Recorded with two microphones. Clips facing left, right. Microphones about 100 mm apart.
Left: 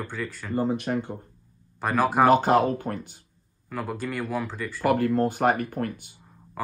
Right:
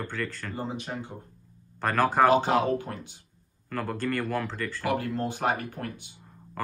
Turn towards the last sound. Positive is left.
turn(degrees=5)  # may be behind; listen again after turning